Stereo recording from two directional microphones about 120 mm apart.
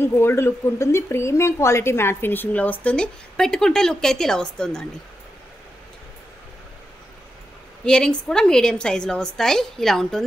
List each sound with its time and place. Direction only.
0.0 s speech: 20° left (ahead or behind)
7.8 s a woman's voice: 5° left (ahead or behind)